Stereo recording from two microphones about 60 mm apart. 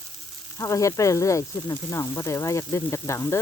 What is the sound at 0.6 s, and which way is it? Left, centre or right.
Speech, left.